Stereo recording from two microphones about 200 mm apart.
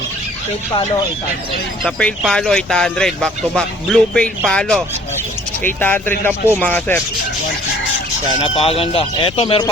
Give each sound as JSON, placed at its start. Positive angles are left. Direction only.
{"t": 0.7, "sound": "speech", "side_deg": 25}
{"t": 1.8, "sound": "speech", "side_deg": 5}
{"t": 8.4, "sound": "speech", "side_deg": 30}